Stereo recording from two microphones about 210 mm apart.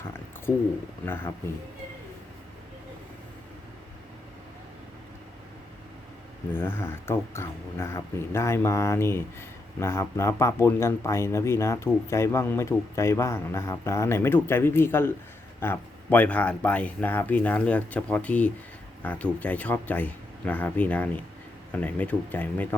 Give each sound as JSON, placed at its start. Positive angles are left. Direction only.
{"t": 1.0, "sound": "a man's voice", "side_deg": 10}
{"t": 6.5, "sound": "a man's voice", "side_deg": 10}